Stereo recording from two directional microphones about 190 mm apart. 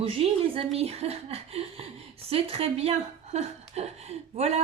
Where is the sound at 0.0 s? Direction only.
30° right (ahead or behind).